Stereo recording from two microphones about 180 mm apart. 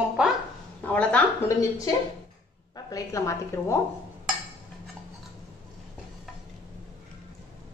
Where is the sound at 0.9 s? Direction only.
10° left (ahead or behind).